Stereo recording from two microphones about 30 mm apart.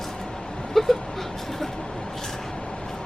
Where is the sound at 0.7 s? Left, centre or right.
Centre.